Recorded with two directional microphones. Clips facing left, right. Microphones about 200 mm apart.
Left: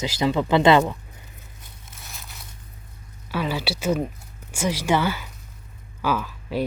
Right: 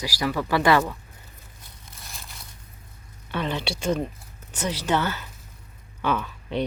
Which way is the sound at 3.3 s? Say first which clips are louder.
Left 2 dB; 5° left (ahead or behind).